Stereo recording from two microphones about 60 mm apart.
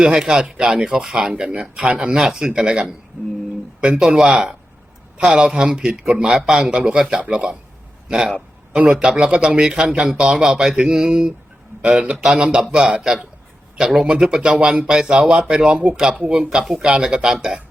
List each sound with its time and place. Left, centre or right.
0.0 s a man's voice: centre